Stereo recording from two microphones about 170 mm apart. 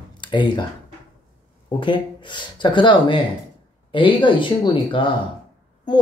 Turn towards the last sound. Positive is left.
turn(degrees=25)  # may be behind; listen again after turning